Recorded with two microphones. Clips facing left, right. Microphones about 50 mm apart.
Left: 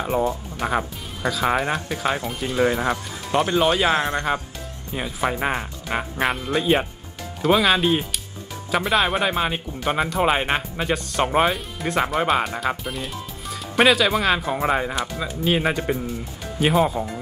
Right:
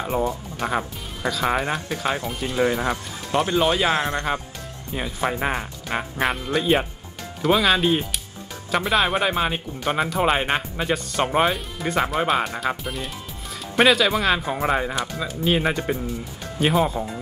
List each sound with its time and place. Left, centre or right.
0.6 s speech: centre